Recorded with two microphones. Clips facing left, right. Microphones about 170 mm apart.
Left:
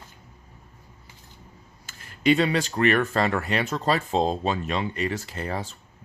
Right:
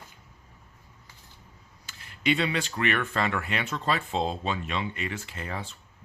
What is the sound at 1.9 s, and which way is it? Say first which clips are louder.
Speech: left 6 dB; 45° left (ahead or behind).